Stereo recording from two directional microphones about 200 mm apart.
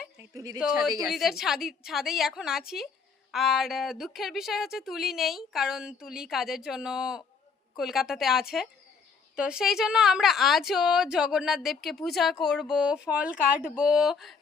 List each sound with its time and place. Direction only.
0.0 s a woman's voice: 15° right (ahead or behind)
0.6 s speech: centre (ahead or behind)